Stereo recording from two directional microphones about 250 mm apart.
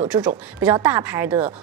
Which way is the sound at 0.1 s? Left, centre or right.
Centre.